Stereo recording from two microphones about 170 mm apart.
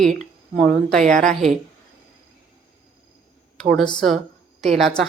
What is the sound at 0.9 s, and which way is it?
Speech, 5° left (ahead or behind).